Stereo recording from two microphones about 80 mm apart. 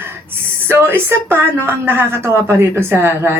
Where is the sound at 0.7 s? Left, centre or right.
Right.